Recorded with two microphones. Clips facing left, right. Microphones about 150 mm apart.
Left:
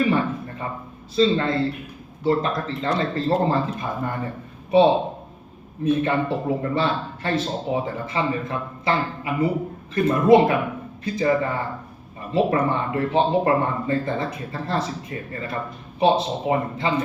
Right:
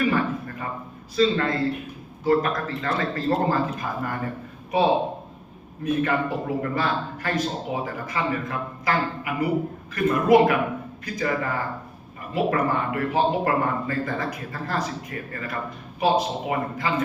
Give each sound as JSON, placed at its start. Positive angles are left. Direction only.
{"t": 0.0, "sound": "a sound", "side_deg": 25}
{"t": 1.1, "sound": "a man's voice", "side_deg": 25}
{"t": 5.8, "sound": "a man's voice", "side_deg": 25}